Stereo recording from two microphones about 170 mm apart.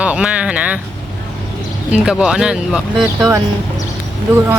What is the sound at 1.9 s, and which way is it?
Speech, 5° right (ahead or behind).